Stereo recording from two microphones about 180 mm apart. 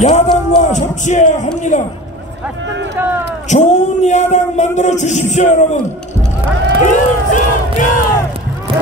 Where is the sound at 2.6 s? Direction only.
85° right.